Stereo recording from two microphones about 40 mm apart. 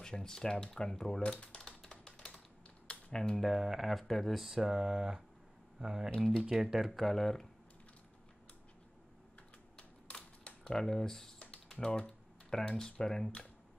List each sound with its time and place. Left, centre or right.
0.0 s speech: centre
1.2 s speech: left
1.8 s a sound: centre
3.1 s speech: centre
3.3 s speech: centre
4.4 s speech: centre
6.9 s speech: centre
10.6 s speech: centre